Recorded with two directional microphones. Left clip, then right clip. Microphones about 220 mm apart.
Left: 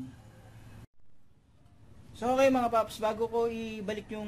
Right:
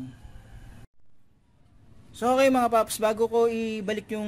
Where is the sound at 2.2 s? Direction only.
45° right (ahead or behind).